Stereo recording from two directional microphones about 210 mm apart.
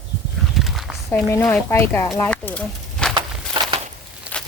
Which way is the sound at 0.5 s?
Centre (ahead or behind).